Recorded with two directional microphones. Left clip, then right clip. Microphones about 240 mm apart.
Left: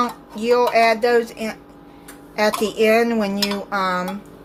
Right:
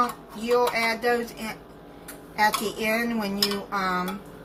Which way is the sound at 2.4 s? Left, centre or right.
Left.